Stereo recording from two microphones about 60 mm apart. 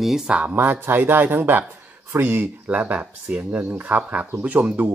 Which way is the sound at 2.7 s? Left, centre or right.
Right.